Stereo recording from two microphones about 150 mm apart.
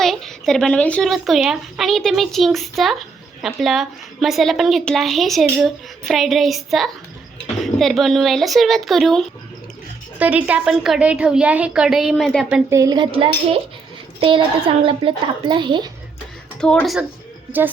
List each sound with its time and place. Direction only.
0.0 s speech: centre (ahead or behind)
10.2 s speech: 10° right (ahead or behind)
12.7 s a woman's voice: 25° right (ahead or behind)
16.6 s speech: 5° left (ahead or behind)